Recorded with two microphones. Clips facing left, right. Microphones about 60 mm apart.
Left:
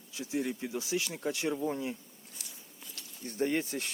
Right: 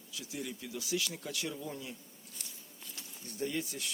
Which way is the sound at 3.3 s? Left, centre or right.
Left.